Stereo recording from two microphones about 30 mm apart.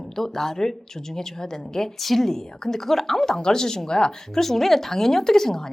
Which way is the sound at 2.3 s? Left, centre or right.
Centre.